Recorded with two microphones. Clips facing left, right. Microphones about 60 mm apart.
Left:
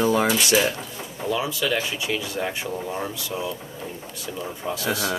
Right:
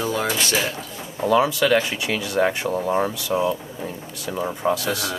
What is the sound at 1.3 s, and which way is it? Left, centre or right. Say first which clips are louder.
Speech: right 7 dB; right.